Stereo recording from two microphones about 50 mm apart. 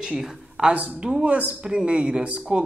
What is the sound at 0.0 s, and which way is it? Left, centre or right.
Speech, centre.